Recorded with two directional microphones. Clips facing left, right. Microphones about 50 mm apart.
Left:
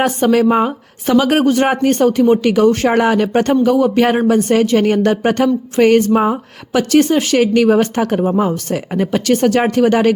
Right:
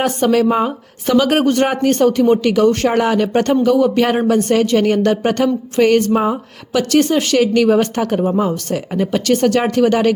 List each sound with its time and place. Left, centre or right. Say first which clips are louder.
0.0 s speech: left 1 dB; centre
8.1 s speech: right 1 dB; centre
8.4 s speech: left 1 dB; left